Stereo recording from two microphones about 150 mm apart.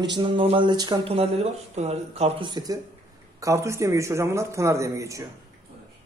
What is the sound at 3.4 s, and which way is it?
A man's voice, 20° right (ahead or behind).